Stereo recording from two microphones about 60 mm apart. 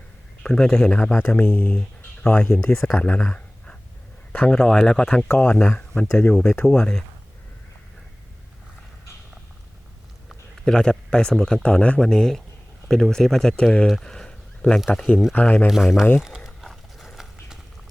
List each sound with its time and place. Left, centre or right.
0.4 s speech: centre
4.3 s a sound: left
4.5 s speech: centre
5.3 s speech: left
10.7 s speech: centre
12.0 s speech: centre
13.8 s a sound: centre
14.9 s speech: centre
15.3 s speech: left
15.6 s speech: centre
16.5 s horse: centre